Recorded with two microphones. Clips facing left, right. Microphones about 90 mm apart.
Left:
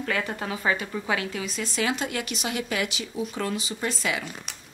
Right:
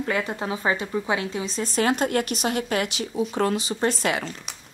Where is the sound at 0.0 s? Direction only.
20° right (ahead or behind); by 2.9 s 45° right (ahead or behind).